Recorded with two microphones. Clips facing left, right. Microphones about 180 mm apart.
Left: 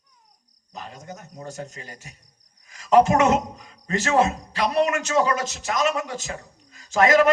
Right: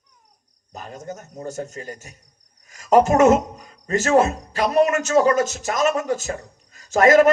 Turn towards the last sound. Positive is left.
turn(degrees=-45)  # may be behind; listen again after turning